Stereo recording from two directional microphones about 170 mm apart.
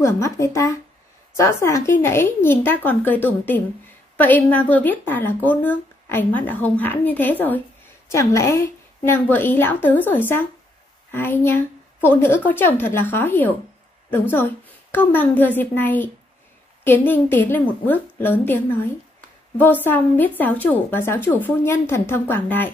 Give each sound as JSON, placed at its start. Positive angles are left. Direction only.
{"t": 0.0, "sound": "a woman's voice", "side_deg": 15}